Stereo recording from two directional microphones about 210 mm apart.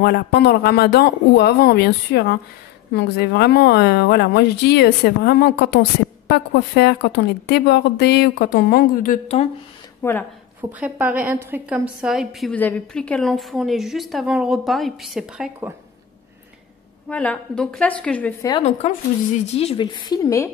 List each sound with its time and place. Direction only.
0.0 s a woman's voice: 50° left (ahead or behind)
10.0 s a woman's voice: 15° left (ahead or behind)
10.8 s a woman's voice: 5° right (ahead or behind)
17.1 s a woman's voice: 5° left (ahead or behind)
18.6 s speech: 30° left (ahead or behind); by 20.4 s 15° left (ahead or behind)